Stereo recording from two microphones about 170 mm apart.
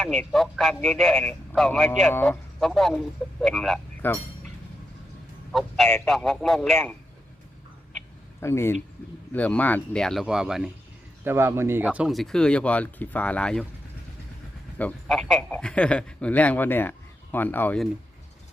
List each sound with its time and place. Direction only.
0.0 s speech: centre (ahead or behind)
2.0 s speech: 10° left (ahead or behind)
4.0 s a man's voice: 10° left (ahead or behind)
5.5 s speech: centre (ahead or behind)
8.4 s a man's voice: 15° left (ahead or behind); by 10.7 s 5° right (ahead or behind)
11.2 s speech: 15° right (ahead or behind); by 13.7 s 5° left (ahead or behind)
14.8 s a man's voice: 5° left (ahead or behind)